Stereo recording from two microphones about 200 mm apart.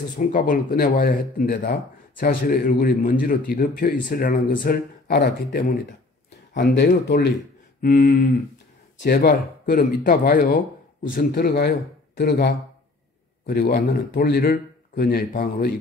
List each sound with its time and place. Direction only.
0.3 s speech: 45° left (ahead or behind)
6.7 s speech: 55° left (ahead or behind)
7.8 s speech: 40° left (ahead or behind)
8.9 s speech: 55° left (ahead or behind)